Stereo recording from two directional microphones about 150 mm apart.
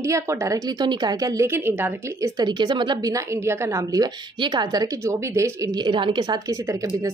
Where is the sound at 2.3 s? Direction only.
30° right (ahead or behind).